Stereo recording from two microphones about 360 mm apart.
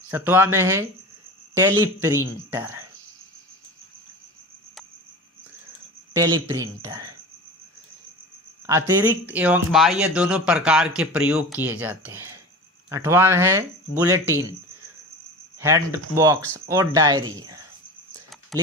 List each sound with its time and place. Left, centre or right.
0.1 s speech: centre
6.1 s speech: centre
8.6 s speech: centre
15.6 s speech: centre